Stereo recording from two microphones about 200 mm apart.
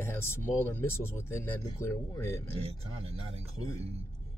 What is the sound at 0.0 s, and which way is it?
Speech, 10° left (ahead or behind).